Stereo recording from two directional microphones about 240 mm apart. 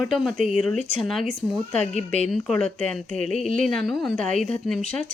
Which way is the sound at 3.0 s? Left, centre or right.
Right.